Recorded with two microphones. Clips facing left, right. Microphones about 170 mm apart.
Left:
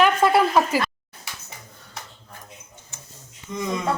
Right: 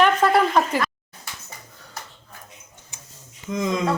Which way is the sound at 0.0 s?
10° left (ahead or behind).